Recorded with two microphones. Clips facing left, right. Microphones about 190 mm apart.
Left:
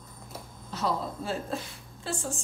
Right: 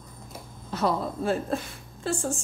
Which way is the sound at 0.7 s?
55° right (ahead or behind).